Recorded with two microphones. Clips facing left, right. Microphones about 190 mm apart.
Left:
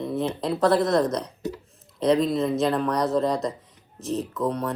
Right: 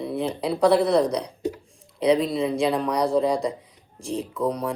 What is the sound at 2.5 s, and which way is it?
Speech, 10° right (ahead or behind).